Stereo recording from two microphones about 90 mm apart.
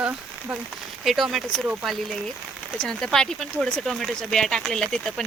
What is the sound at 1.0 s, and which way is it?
Speech, centre (ahead or behind).